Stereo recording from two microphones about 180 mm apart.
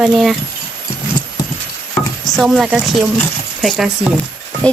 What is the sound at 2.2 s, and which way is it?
Speech, centre (ahead or behind).